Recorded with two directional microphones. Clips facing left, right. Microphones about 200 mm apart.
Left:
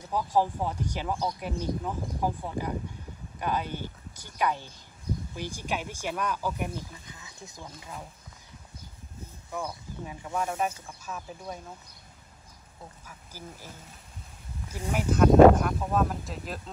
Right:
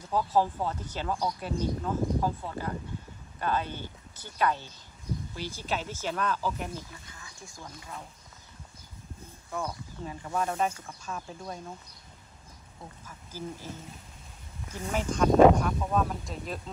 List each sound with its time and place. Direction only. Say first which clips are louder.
0.1 s speech: even; 15° left (ahead or behind)
9.5 s speech: right 1 dB; 5° left (ahead or behind)
13.0 s speech: right 9 dB; 10° left (ahead or behind)